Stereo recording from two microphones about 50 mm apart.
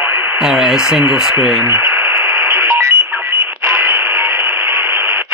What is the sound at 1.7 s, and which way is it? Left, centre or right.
Radio, right.